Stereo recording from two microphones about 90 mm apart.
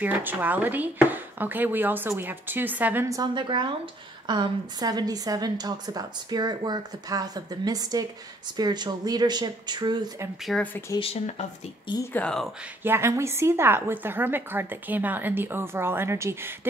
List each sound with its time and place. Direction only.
0.0 s a woman's voice: 20° right (ahead or behind)
3.3 s a woman's voice: 60° right (ahead or behind)
10.5 s speech: 5° left (ahead or behind)
10.9 s speech: 40° left (ahead or behind)
12.2 s speech: 15° left (ahead or behind)
12.8 s a woman's voice: 30° right (ahead or behind)